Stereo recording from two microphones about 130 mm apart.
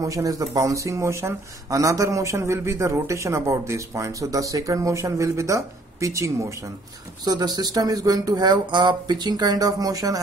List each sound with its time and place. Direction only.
0.0 s speech: 25° right (ahead or behind)